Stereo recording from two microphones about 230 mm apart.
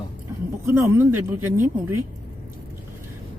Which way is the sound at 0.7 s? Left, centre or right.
Centre.